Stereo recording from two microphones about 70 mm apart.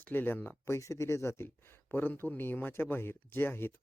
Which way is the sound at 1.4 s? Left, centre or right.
Left.